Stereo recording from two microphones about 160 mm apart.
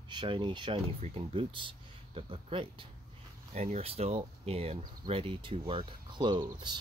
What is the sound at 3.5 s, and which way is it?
Speech, 45° right (ahead or behind).